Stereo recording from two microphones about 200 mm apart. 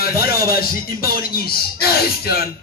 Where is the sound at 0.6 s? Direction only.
50° left (ahead or behind).